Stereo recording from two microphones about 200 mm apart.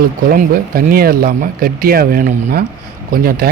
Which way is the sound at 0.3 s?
45° right (ahead or behind).